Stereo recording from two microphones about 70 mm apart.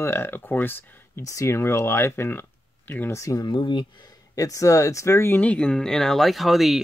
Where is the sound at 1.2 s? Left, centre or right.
Left.